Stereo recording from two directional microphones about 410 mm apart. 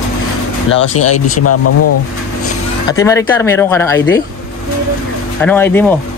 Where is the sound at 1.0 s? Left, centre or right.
Left.